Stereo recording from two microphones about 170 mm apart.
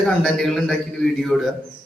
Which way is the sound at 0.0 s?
5° left (ahead or behind).